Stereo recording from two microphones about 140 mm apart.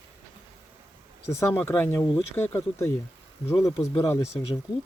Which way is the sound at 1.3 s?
20° left (ahead or behind).